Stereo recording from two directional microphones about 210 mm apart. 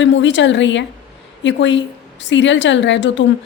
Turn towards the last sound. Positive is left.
turn(degrees=60)  # may be behind; listen again after turning